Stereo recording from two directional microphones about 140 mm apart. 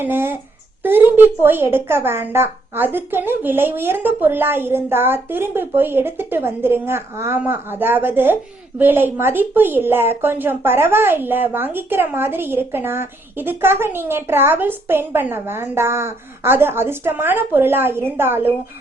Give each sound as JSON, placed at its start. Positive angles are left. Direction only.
{"t": 0.0, "sound": "speech", "side_deg": -15}